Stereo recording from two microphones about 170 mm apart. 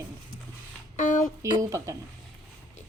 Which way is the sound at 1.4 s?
20° right (ahead or behind).